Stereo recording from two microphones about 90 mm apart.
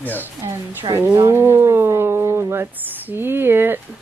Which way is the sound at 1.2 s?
30° right (ahead or behind).